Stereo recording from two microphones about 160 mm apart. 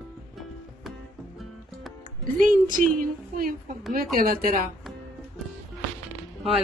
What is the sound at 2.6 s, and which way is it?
A woman's voice, 60° right (ahead or behind).